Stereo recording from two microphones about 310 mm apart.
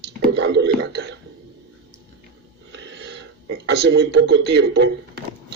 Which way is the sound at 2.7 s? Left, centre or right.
Right.